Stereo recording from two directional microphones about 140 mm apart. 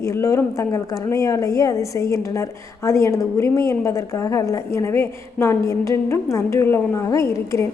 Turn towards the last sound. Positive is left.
turn(degrees=20)  # may be behind; listen again after turning